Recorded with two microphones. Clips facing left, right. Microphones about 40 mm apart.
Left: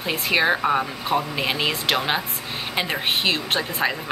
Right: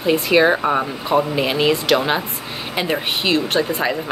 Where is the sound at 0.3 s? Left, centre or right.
Centre.